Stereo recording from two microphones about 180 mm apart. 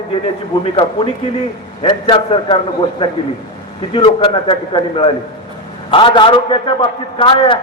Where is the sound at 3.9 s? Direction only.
30° left (ahead or behind).